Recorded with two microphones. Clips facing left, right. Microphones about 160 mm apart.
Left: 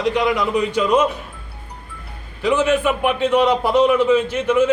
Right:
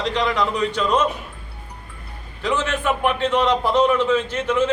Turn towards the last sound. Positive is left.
turn(degrees=10)  # may be behind; listen again after turning